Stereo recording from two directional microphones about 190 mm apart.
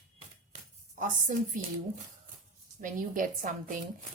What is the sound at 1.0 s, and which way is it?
Speech, 45° right (ahead or behind).